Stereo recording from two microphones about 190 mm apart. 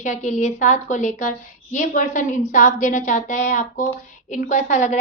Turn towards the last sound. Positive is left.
turn(degrees=40)  # may be behind; listen again after turning